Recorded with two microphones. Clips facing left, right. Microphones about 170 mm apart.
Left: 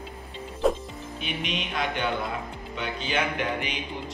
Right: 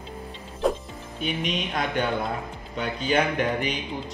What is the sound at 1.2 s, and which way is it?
Speech, 45° right (ahead or behind).